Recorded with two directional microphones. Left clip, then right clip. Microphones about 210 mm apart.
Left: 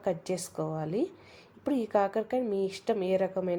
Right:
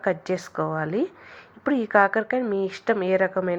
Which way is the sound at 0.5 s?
20° right (ahead or behind).